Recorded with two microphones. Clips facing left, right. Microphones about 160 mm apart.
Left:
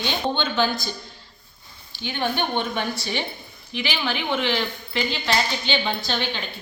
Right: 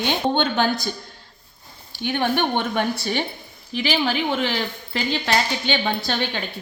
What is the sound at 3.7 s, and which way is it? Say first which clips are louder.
Speech: right 5 dB; 40° right (ahead or behind).